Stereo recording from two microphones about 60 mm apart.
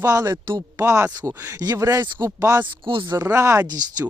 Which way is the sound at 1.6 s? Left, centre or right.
Right.